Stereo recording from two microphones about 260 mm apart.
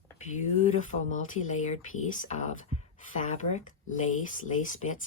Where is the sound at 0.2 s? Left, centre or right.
Left.